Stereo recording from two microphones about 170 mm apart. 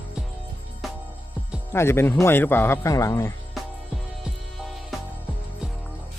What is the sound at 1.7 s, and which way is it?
Speech, 15° left (ahead or behind).